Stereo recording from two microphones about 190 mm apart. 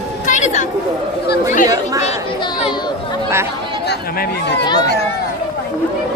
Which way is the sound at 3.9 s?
65° left (ahead or behind).